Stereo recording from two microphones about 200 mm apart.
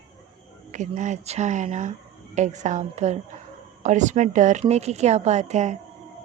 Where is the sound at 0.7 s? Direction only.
35° right (ahead or behind).